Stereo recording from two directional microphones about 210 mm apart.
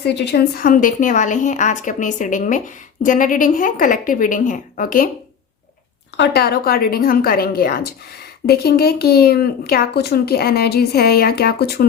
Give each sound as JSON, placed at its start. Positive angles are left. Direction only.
{"t": 0.0, "sound": "a woman's voice", "side_deg": 55}
{"t": 6.1, "sound": "speech", "side_deg": 50}